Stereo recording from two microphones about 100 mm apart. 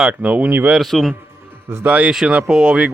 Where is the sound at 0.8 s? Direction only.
Centre (ahead or behind).